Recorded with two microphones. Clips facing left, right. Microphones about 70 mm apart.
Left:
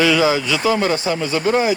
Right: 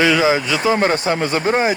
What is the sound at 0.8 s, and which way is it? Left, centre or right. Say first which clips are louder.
Speech: right 2 dB; right.